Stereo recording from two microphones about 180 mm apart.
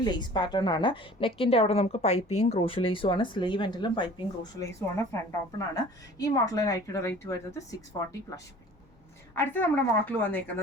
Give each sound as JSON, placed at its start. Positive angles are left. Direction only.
{"t": 0.0, "sound": "a woman's voice", "side_deg": 25}
{"t": 9.3, "sound": "a woman's voice", "side_deg": 10}